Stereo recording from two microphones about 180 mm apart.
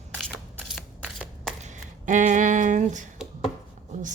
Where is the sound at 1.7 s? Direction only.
45° right (ahead or behind).